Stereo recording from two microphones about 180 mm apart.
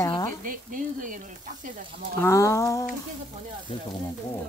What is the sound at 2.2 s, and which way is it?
Speech, 15° left (ahead or behind).